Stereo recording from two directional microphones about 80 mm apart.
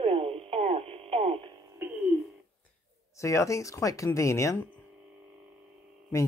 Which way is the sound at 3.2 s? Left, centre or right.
Left.